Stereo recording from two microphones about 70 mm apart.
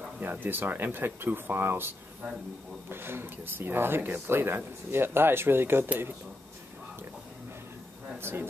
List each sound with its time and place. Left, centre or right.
0.2 s speech: right
8.2 s speech: right